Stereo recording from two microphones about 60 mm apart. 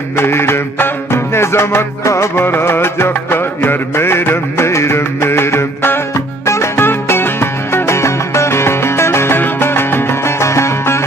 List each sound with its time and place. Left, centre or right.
0.2 s music: left
6.4 s music: left